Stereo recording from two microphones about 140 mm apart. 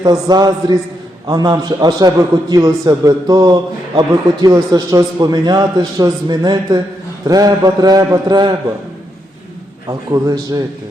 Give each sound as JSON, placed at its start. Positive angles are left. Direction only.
{"t": 0.0, "sound": "a man's voice", "side_deg": -30}
{"t": 9.8, "sound": "a man's voice", "side_deg": -25}